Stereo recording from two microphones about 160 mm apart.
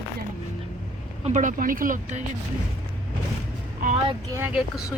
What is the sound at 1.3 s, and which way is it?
Speech, 50° right (ahead or behind).